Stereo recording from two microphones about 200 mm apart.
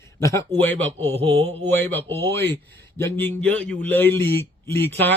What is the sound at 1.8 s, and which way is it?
A man's voice, 10° left (ahead or behind).